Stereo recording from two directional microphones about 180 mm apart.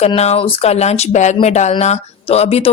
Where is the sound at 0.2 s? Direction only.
35° left (ahead or behind).